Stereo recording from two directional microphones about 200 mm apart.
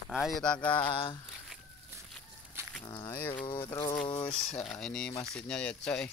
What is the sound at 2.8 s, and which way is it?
Speech, 20° left (ahead or behind).